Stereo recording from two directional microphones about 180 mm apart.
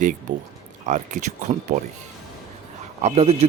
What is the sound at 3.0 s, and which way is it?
Speech, 35° right (ahead or behind).